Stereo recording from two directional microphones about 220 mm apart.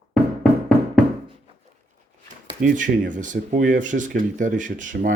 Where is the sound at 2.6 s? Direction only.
35° right (ahead or behind).